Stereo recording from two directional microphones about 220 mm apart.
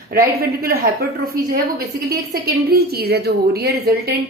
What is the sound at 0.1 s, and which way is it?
Speech, 45° right (ahead or behind).